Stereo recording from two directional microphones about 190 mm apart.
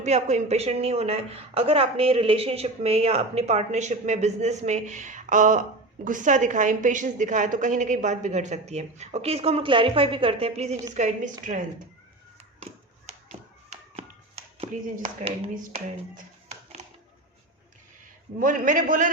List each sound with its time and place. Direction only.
0.0 s speech: 35° right (ahead or behind)
13.1 s tap: 35° right (ahead or behind)
15.5 s speech: 40° right (ahead or behind)
18.3 s a man's voice: 45° right (ahead or behind)